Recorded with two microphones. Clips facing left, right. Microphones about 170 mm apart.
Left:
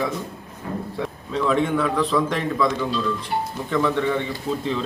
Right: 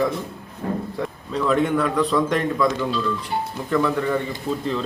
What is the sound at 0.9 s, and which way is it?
A man's voice, centre (ahead or behind).